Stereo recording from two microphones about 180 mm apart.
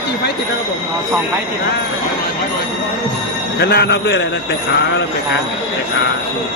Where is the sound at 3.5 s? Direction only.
65° left (ahead or behind).